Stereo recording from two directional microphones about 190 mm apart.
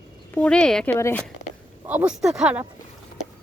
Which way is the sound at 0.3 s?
5° left (ahead or behind).